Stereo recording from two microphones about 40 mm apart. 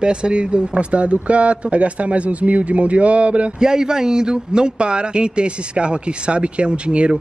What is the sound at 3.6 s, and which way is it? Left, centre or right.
A man's voice, centre.